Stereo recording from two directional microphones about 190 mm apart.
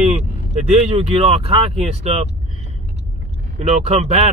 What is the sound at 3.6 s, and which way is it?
Speech, 35° right (ahead or behind).